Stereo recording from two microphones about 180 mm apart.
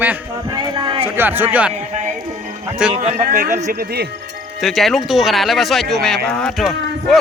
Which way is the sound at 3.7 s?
60° right (ahead or behind).